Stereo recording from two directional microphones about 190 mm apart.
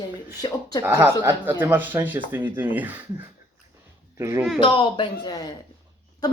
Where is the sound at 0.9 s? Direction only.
10° right (ahead or behind).